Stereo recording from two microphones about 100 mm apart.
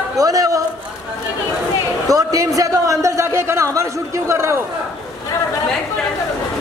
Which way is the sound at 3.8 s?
30° right (ahead or behind).